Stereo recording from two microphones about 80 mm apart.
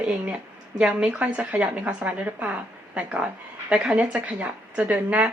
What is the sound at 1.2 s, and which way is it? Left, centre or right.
Speech, right.